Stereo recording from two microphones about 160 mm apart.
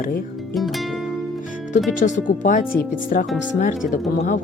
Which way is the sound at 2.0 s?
50° left (ahead or behind).